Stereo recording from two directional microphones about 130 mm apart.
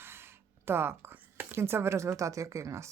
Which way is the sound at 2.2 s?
25° right (ahead or behind).